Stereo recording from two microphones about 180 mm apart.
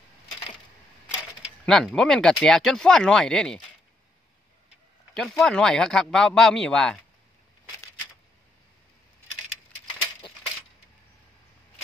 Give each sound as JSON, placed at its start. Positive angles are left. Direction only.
{"t": 1.7, "sound": "speech", "side_deg": 5}
{"t": 5.1, "sound": "speech", "side_deg": 5}
{"t": 10.2, "sound": "a sound", "side_deg": 25}